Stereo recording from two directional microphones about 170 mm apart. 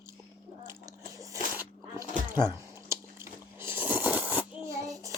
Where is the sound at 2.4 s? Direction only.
15° right (ahead or behind).